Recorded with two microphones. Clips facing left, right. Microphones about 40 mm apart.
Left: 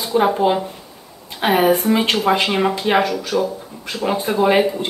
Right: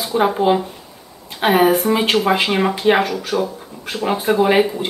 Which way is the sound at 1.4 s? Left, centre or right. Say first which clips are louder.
Right 1 dB; centre.